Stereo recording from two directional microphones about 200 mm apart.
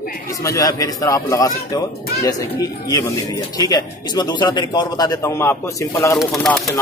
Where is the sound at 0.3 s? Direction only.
15° left (ahead or behind).